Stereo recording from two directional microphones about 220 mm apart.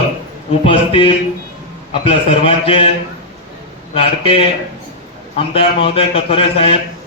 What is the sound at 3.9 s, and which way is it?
A man's voice, 25° left (ahead or behind).